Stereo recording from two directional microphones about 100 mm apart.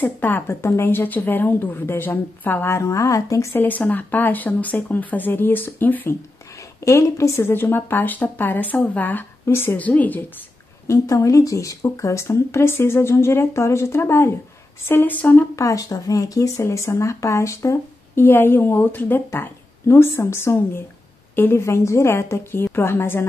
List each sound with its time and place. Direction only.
0.0 s speech: 20° left (ahead or behind)
3.5 s speech: 20° left (ahead or behind)
6.8 s speech: 30° left (ahead or behind)
10.9 s speech: 30° left (ahead or behind)
15.5 s speech: 35° left (ahead or behind)